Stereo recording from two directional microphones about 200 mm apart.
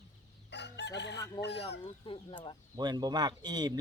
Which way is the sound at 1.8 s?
25° left (ahead or behind).